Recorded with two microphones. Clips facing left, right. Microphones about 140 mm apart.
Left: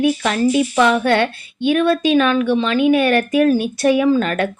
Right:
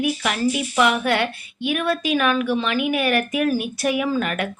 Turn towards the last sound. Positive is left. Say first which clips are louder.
# left 7 dB
turn(degrees=30)  # may be behind; listen again after turning